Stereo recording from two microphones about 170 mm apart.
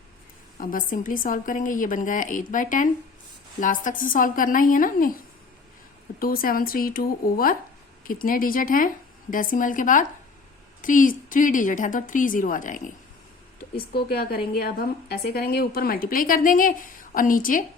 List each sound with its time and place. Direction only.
0.6 s a woman's voice: 55° left (ahead or behind)
13.7 s a woman's voice: 65° left (ahead or behind)